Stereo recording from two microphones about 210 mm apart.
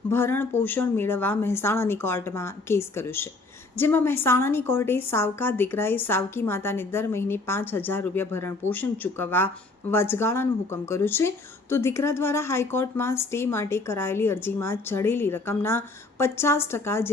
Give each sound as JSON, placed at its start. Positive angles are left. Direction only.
{"t": 0.1, "sound": "speech", "side_deg": 10}